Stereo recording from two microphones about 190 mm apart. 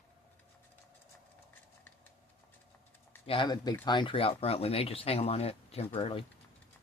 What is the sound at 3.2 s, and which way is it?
Speech, 25° left (ahead or behind).